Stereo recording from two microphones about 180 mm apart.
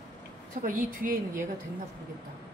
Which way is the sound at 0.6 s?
50° right (ahead or behind).